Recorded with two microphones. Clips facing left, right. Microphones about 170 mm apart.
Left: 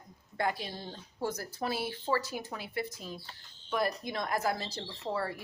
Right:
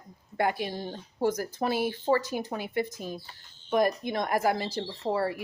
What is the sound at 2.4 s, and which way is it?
Speech, 20° right (ahead or behind).